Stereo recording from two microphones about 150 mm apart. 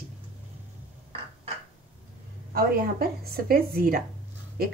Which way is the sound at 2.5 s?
90° right.